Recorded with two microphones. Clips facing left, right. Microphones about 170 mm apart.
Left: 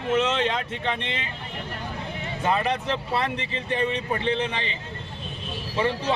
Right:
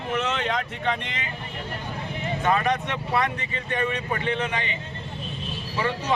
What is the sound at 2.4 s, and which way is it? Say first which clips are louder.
Speech: even; 30° left (ahead or behind).